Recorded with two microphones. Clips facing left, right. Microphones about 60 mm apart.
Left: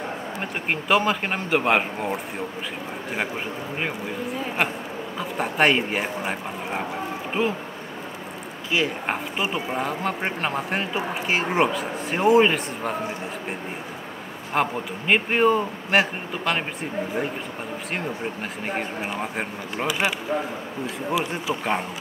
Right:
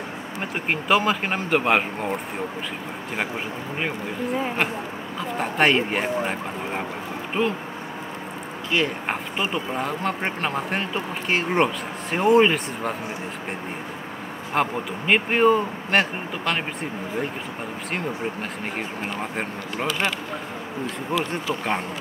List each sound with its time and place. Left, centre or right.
0.4 s speech: centre
5.4 s speech: centre
8.7 s speech: centre
14.5 s speech: centre
19.3 s speech: centre